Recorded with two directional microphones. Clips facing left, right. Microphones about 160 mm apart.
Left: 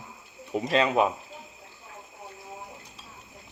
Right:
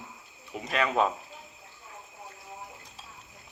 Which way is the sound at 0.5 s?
35° left (ahead or behind).